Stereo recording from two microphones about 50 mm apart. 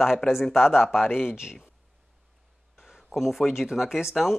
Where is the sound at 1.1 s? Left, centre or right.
Left.